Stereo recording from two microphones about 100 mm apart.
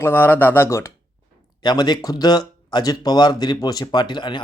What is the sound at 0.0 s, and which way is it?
Speech, 20° left (ahead or behind).